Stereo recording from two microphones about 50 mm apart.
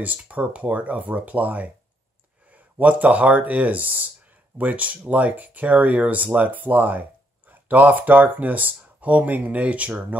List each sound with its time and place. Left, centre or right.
0.2 s speech: right